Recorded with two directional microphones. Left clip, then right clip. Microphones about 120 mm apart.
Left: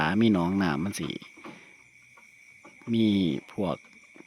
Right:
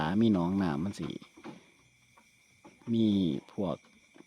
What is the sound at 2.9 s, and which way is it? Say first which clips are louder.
Speech: left 4 dB; centre (ahead or behind).